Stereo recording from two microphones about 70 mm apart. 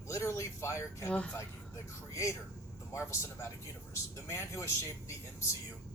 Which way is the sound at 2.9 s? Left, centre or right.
Left.